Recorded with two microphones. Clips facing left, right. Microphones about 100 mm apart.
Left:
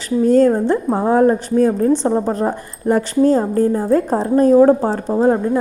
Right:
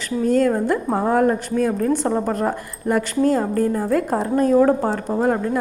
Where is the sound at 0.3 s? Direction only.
30° left (ahead or behind).